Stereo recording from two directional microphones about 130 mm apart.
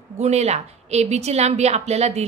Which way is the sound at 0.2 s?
55° right (ahead or behind).